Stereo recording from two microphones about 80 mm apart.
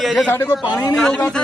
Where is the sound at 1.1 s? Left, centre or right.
Centre.